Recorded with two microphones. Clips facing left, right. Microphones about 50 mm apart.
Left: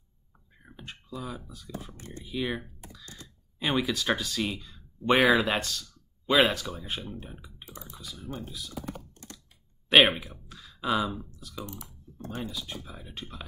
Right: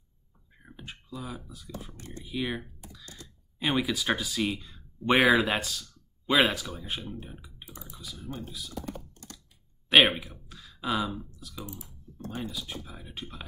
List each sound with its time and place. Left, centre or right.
0.6 s a sound: centre
2.0 s speech: left
2.2 s speech: centre
11.6 s speech: left
12.4 s speech: centre